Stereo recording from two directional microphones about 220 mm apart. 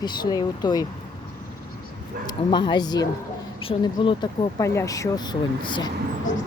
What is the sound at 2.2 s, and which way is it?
Speech, 20° left (ahead or behind).